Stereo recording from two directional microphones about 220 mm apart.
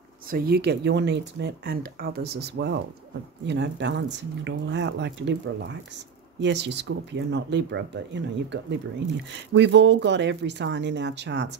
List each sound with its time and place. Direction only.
0.3 s speech: 45° right (ahead or behind)